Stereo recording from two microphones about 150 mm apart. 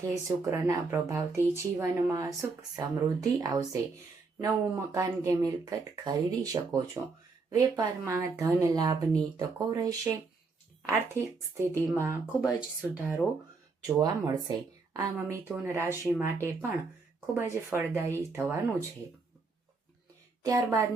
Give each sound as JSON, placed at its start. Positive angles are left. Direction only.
{"t": 0.3, "sound": "speech", "side_deg": -20}
{"t": 7.0, "sound": "speech", "side_deg": -10}
{"t": 12.4, "sound": "speech", "side_deg": -5}
{"t": 13.8, "sound": "speech", "side_deg": -25}
{"t": 20.4, "sound": "speech", "side_deg": -20}